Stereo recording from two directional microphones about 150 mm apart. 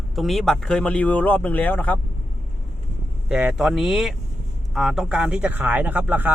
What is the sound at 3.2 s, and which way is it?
A man's voice, 5° right (ahead or behind).